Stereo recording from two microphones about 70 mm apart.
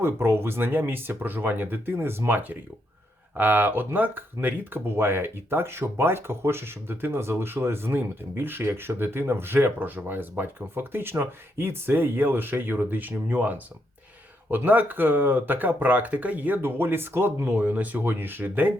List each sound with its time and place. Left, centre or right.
0.0 s speech: right
17.5 s speech: right